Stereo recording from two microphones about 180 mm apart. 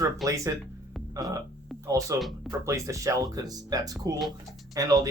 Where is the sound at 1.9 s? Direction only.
20° right (ahead or behind).